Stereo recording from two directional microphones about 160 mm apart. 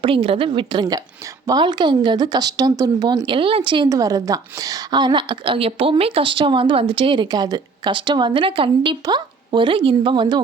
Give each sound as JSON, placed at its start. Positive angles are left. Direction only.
{"t": 0.0, "sound": "speech", "side_deg": -35}